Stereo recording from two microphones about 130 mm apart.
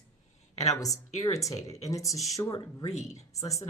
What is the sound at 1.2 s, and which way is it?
Speech, 25° left (ahead or behind).